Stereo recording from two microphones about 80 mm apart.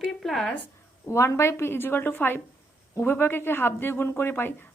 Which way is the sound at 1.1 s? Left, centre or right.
Left.